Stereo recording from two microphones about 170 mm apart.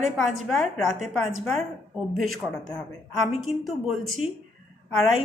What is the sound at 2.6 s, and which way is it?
A woman's voice, 5° left (ahead or behind).